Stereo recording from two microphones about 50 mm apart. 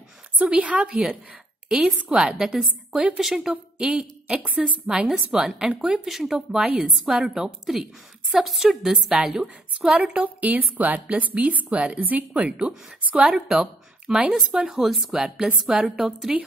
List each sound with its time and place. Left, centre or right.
0.4 s a woman's voice: right; by 3.5 s centre
3.7 s a woman's voice: centre
10.2 s a woman's voice: right
12.4 s a woman's voice: centre
14.3 s a woman's voice: centre